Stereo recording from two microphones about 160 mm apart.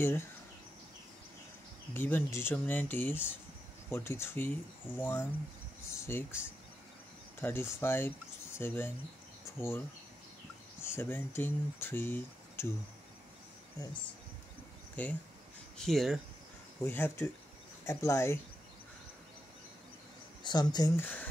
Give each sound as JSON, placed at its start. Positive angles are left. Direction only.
{"t": 0.0, "sound": "speech", "side_deg": 15}
{"t": 2.0, "sound": "speech", "side_deg": 15}
{"t": 15.0, "sound": "speech", "side_deg": 10}
{"t": 16.8, "sound": "speech", "side_deg": 10}
{"t": 20.4, "sound": "speech", "side_deg": 25}
{"t": 21.0, "sound": "speech", "side_deg": 10}